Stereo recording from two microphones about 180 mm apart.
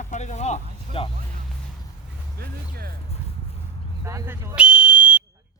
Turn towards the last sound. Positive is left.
turn(degrees=-5)  # may be behind; listen again after turning